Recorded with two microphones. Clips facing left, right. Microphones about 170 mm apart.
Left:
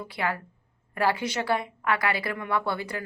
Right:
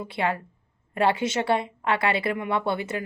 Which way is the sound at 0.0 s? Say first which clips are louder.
Right 3 dB; 25° right (ahead or behind).